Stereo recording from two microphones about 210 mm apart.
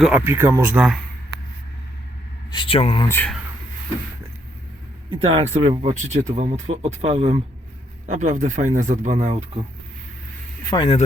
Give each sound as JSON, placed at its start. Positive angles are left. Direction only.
{"t": 0.0, "sound": "speech", "side_deg": -10}
{"t": 2.5, "sound": "speech", "side_deg": 25}
{"t": 3.1, "sound": "speech", "side_deg": 10}
{"t": 5.1, "sound": "speech", "side_deg": -30}
{"t": 10.7, "sound": "speech", "side_deg": 20}